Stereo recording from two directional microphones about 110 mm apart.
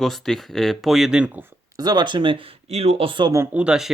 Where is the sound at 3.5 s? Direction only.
10° right (ahead or behind).